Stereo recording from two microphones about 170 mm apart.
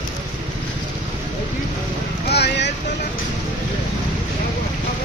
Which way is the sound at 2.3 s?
85° left.